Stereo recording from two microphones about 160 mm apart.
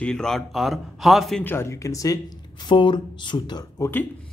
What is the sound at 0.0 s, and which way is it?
A man's voice, 5° left (ahead or behind).